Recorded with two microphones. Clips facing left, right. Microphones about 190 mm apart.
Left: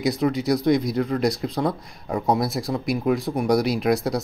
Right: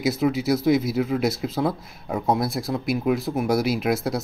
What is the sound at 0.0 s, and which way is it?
Speech, 5° right (ahead or behind).